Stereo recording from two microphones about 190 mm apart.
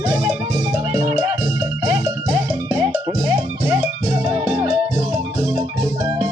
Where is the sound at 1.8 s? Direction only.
15° right (ahead or behind).